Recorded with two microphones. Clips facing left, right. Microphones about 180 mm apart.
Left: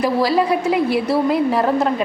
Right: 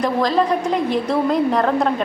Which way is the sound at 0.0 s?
10° left (ahead or behind).